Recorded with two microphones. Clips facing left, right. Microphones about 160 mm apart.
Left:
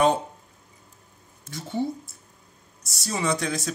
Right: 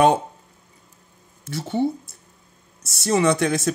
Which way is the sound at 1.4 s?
75° right (ahead or behind).